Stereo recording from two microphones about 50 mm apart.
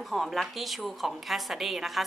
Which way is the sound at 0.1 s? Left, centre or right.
Centre.